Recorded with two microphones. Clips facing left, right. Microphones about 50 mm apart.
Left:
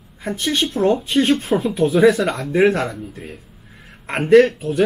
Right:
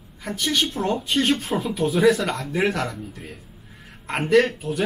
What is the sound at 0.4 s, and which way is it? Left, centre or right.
Speech, left.